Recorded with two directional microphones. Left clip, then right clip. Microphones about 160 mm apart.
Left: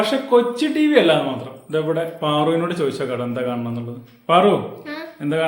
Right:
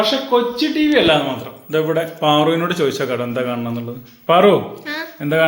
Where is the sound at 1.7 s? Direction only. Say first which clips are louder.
Right 3 dB; 15° right (ahead or behind); by 5.4 s 35° right (ahead or behind).